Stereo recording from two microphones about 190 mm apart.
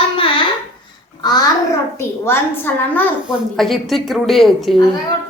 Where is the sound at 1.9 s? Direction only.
10° left (ahead or behind).